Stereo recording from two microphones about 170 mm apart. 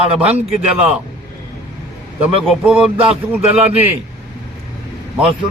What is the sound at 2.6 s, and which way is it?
A man's voice, 10° right (ahead or behind).